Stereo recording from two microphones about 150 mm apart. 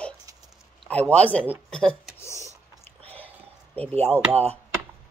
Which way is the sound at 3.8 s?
45° right (ahead or behind).